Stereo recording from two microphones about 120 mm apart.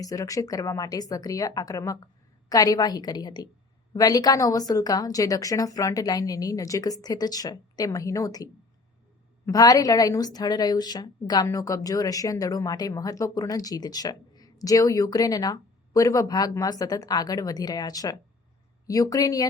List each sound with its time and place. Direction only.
0.0 s speech: 30° left (ahead or behind)
9.5 s speech: 30° left (ahead or behind)